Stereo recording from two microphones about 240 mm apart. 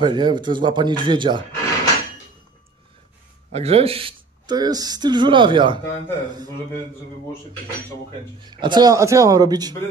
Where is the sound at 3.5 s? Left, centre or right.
Right.